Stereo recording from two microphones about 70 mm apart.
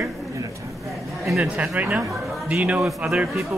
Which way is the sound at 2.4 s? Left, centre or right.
Centre.